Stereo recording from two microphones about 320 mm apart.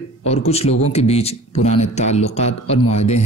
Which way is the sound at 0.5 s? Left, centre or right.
Centre.